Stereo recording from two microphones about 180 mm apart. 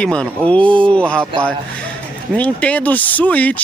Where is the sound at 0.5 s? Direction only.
30° right (ahead or behind).